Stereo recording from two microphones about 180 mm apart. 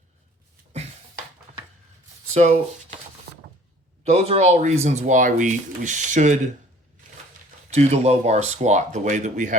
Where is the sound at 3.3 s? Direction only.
65° right (ahead or behind).